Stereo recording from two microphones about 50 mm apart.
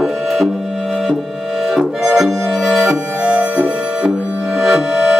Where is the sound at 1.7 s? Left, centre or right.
Centre.